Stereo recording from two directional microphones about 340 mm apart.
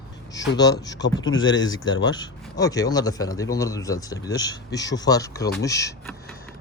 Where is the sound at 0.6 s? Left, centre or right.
Centre.